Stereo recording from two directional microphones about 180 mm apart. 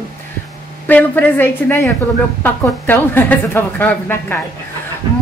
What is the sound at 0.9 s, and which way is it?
Speech, 10° left (ahead or behind).